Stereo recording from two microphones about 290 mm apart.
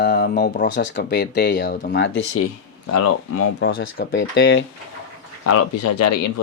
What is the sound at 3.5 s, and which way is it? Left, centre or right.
Speech, left.